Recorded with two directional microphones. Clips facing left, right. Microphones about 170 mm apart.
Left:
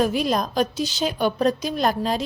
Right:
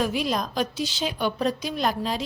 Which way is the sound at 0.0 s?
45° left (ahead or behind).